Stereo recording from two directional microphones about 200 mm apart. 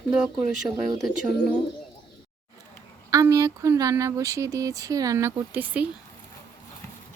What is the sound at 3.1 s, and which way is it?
Speech, 15° right (ahead or behind).